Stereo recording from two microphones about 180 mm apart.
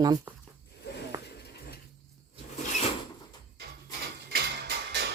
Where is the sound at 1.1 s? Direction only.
20° right (ahead or behind).